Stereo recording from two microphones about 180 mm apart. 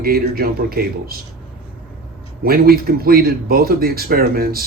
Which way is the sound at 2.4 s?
55° right (ahead or behind).